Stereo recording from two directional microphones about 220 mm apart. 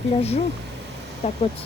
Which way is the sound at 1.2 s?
30° left (ahead or behind).